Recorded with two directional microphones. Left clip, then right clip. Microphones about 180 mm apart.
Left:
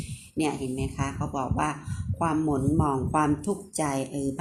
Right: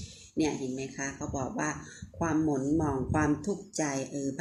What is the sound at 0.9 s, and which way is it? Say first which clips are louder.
Speech: left 4 dB; 45° left (ahead or behind).